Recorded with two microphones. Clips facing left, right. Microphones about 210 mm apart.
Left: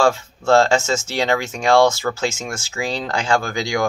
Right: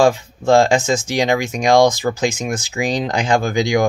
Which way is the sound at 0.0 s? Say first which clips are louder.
Right 3 dB; 15° right (ahead or behind).